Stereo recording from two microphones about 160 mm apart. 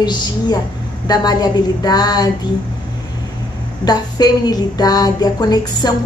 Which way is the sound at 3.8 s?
25° left (ahead or behind).